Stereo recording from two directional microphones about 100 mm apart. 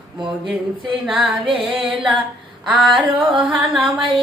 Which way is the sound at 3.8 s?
60° right (ahead or behind).